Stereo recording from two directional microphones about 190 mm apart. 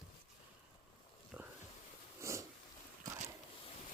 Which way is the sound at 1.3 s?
10° right (ahead or behind).